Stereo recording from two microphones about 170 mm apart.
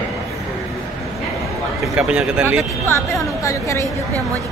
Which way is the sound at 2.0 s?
5° right (ahead or behind).